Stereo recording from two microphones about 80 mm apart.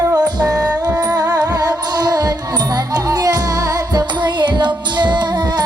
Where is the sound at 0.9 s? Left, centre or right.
Right.